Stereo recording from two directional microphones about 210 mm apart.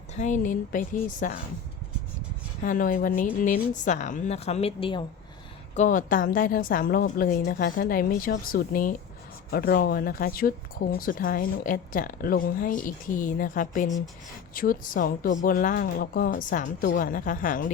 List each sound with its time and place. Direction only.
0.2 s speech: 35° left (ahead or behind)
2.6 s speech: 40° left (ahead or behind); by 5.0 s 25° left (ahead or behind)
5.7 s a woman's voice: 35° left (ahead or behind)